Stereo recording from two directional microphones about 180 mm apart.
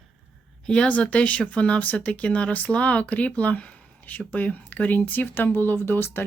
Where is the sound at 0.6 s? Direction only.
5° left (ahead or behind).